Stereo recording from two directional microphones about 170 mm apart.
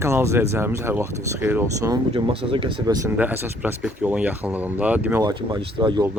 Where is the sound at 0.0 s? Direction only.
15° right (ahead or behind).